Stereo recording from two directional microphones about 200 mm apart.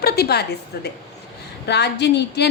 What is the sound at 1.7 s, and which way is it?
Speech, 55° left (ahead or behind).